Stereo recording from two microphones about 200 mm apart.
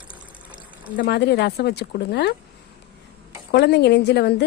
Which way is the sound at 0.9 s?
55° left (ahead or behind).